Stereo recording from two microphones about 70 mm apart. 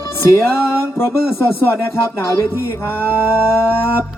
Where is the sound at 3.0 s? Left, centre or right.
Left.